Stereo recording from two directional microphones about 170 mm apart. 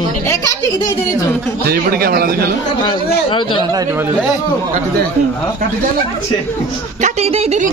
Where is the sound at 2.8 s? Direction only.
30° left (ahead or behind).